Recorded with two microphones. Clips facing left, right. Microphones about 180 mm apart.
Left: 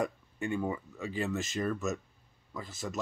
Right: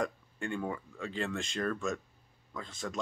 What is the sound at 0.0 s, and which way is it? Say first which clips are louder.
Speech: left 2 dB; 5° left (ahead or behind).